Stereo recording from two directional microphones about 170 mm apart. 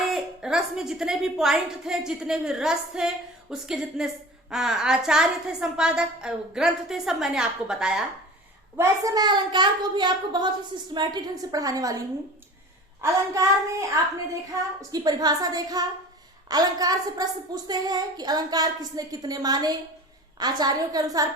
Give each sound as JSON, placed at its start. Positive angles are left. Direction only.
{"t": 0.1, "sound": "a woman's voice", "side_deg": -5}
{"t": 8.7, "sound": "a woman's voice", "side_deg": -15}
{"t": 13.0, "sound": "a woman's voice", "side_deg": -20}